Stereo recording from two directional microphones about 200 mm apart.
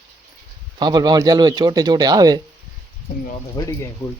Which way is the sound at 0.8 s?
20° right (ahead or behind).